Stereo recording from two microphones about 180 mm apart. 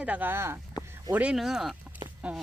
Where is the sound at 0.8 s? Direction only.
20° left (ahead or behind).